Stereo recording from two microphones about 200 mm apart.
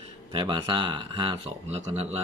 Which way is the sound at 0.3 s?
25° right (ahead or behind).